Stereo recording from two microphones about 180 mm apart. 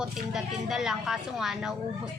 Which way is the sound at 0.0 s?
Centre (ahead or behind).